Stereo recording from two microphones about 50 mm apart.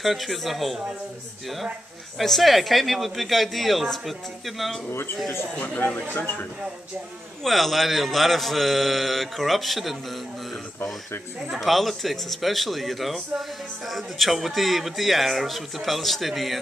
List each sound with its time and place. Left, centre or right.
0.0 s speech: centre
2.1 s speech: centre
7.4 s speech: centre
11.5 s speech: centre